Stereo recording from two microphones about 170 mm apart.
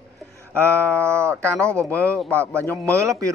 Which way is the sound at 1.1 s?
15° right (ahead or behind).